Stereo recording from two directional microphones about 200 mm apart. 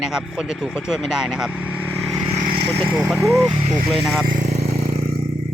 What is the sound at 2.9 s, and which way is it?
Speech, 5° right (ahead or behind).